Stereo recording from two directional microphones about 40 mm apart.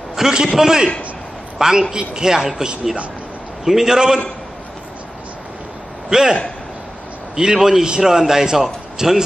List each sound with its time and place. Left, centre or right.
0.1 s a man's voice: centre
6.0 s a man's voice: centre
7.3 s a woman's voice: centre